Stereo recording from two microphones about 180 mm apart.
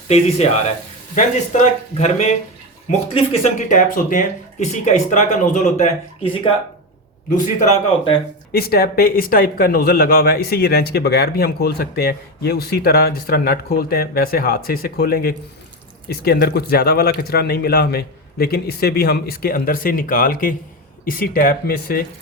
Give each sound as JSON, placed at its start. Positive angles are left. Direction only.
{"t": 0.1, "sound": "speech", "side_deg": 35}
{"t": 8.5, "sound": "speech", "side_deg": 60}